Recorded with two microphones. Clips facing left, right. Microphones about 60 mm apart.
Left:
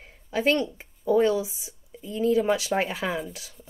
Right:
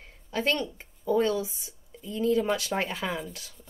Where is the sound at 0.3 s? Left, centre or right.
Centre.